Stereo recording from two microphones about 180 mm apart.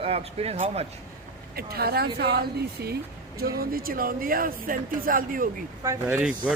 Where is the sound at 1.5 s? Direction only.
55° right (ahead or behind).